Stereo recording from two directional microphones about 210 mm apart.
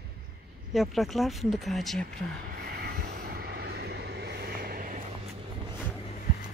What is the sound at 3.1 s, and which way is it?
Vehicle, 45° right (ahead or behind).